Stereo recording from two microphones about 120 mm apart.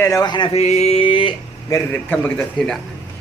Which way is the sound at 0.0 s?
30° left (ahead or behind).